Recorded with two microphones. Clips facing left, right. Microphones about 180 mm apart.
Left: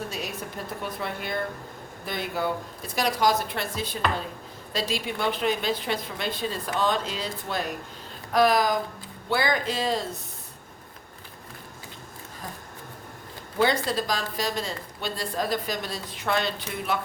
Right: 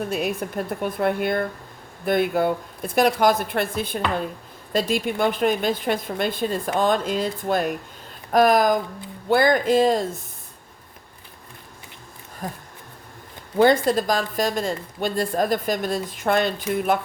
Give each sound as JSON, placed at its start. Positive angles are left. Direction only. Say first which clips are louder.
{"t": 0.1, "sound": "a woman's voice", "louder": "right 9 dB", "side_deg": -55}
{"t": 13.6, "sound": "a woman's voice", "louder": "right 7 dB", "side_deg": -50}